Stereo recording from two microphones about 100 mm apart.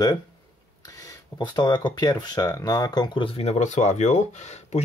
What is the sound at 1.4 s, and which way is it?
Speech, 45° left (ahead or behind).